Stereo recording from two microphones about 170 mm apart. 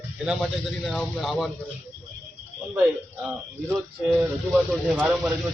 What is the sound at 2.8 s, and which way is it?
Speech, 5° right (ahead or behind).